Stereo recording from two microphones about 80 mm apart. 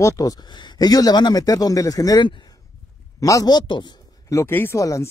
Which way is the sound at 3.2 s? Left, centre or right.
Left.